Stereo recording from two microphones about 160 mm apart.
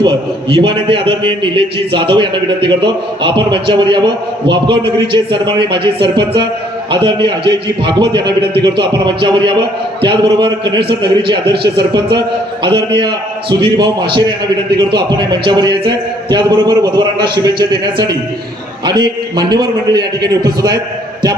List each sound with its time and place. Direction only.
0.0 s a man's voice: 30° right (ahead or behind)